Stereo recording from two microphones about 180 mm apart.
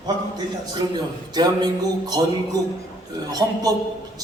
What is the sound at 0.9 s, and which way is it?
A man's voice, 25° right (ahead or behind).